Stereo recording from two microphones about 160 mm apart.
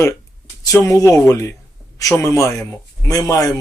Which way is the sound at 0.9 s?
20° left (ahead or behind).